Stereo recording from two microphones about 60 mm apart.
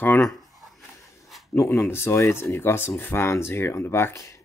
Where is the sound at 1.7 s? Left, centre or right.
Left.